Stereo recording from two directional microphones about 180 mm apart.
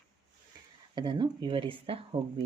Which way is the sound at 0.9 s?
25° right (ahead or behind).